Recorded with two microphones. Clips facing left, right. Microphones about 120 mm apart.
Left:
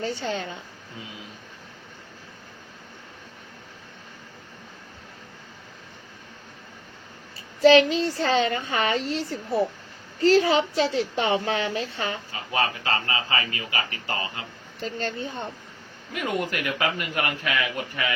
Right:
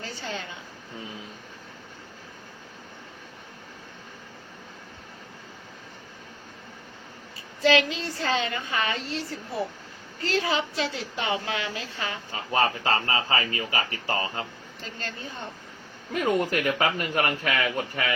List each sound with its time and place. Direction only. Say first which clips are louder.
0.0 s a woman's voice: left 7 dB; 30° left (ahead or behind)
7.6 s a woman's voice: left 6 dB; 30° left (ahead or behind)
12.5 s speech: right 2 dB; 40° right (ahead or behind)
14.8 s a woman's voice: left 8 dB; 30° left (ahead or behind)
16.2 s speech: right 3 dB; 40° right (ahead or behind)